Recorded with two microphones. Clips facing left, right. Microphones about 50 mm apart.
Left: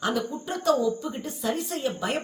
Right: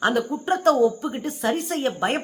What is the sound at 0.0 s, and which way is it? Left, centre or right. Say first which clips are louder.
A woman's voice: right 6 dB; right.